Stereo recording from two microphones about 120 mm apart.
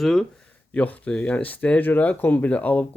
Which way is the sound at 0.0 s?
Centre (ahead or behind).